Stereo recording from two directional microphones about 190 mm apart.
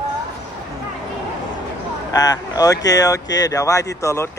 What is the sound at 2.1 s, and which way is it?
Speech, 20° left (ahead or behind).